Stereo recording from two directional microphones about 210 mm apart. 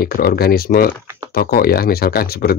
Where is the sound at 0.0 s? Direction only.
45° left (ahead or behind).